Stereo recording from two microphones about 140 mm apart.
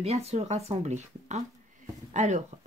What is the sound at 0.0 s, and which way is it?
Speech, 50° right (ahead or behind).